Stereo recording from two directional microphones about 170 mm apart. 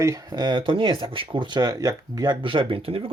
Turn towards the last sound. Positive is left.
turn(degrees=-35)  # may be behind; listen again after turning